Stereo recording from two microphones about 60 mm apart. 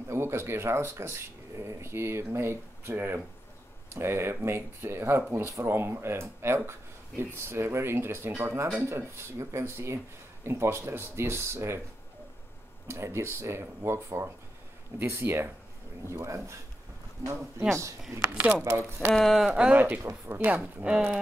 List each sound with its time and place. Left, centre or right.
0.1 s speech: right
12.8 s speech: right
15.0 s speech: right
16.1 s speech: right
17.6 s speech: right
18.4 s speech: right
19.1 s speech: centre
19.7 s a woman's voice: right